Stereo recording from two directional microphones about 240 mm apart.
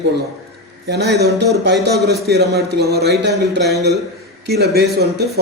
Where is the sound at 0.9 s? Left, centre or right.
Right.